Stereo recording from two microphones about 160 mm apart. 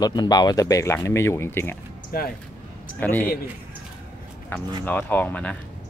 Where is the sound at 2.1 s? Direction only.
65° left (ahead or behind).